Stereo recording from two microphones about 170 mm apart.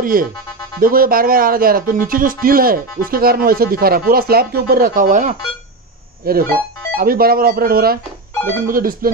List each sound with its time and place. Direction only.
0.0 s speech: 55° right (ahead or behind)
6.2 s speech: 60° right (ahead or behind)